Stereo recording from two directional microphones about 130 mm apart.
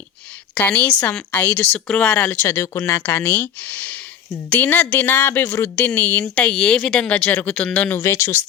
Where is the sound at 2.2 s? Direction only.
20° left (ahead or behind).